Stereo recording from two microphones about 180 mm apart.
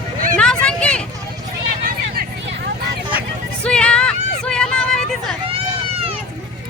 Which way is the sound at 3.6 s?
5° left (ahead or behind).